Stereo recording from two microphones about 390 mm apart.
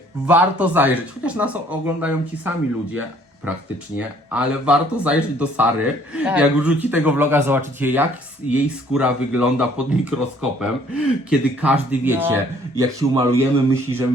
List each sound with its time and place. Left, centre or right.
0.3 s speech: centre